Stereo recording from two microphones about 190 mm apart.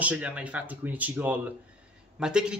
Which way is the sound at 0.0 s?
5° right (ahead or behind).